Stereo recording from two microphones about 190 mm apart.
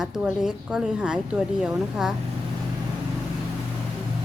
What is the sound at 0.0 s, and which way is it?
A woman's voice, 5° right (ahead or behind).